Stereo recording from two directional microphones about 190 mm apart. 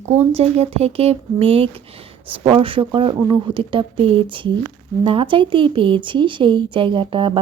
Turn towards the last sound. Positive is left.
turn(degrees=-25)  # may be behind; listen again after turning